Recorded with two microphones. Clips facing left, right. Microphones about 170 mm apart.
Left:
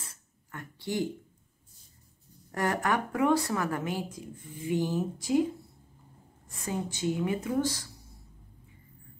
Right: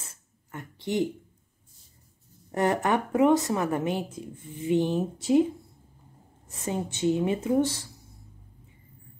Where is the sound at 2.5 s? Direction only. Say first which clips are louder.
Right 4 dB; 25° right (ahead or behind).